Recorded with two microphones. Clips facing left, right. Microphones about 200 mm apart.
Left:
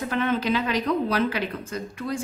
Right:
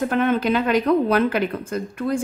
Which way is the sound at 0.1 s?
50° right (ahead or behind).